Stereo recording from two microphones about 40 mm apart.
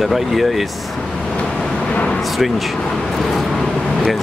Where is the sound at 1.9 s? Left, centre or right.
Left.